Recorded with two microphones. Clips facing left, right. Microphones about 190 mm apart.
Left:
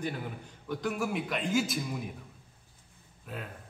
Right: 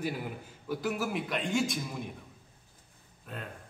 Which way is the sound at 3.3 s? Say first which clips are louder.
Left 2 dB; 5° left (ahead or behind).